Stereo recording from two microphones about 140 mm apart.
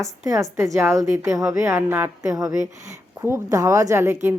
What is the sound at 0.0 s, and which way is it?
A woman's voice, 25° right (ahead or behind).